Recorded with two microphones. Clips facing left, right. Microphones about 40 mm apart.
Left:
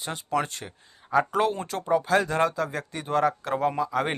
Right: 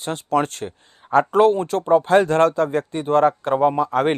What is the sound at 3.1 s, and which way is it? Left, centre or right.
Speech, right.